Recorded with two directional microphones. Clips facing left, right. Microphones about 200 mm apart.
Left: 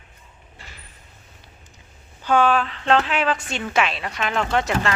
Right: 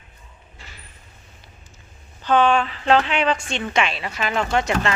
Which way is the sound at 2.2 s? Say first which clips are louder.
Right 1 dB; 10° left (ahead or behind).